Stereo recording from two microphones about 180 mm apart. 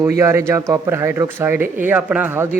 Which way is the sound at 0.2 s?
15° right (ahead or behind).